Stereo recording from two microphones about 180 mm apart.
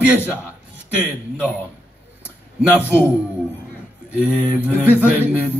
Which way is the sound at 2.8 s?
10° right (ahead or behind).